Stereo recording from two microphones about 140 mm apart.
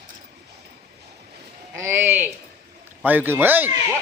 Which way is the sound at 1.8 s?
20° right (ahead or behind).